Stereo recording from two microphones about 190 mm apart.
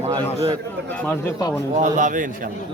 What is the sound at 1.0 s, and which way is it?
Speech, 20° left (ahead or behind).